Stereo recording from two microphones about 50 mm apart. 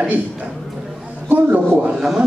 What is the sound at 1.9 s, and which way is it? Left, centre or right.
Speech, centre.